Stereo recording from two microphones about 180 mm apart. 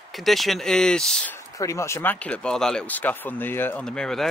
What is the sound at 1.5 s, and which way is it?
Speech, 15° left (ahead or behind).